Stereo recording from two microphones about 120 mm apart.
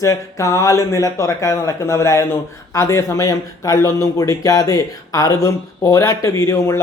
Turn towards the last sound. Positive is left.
turn(degrees=25)  # may be behind; listen again after turning